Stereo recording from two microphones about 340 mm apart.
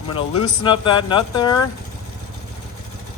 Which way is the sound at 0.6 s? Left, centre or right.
Centre.